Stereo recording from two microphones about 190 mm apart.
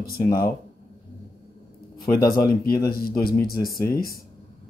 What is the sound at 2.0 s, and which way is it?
A man's voice, 50° left (ahead or behind).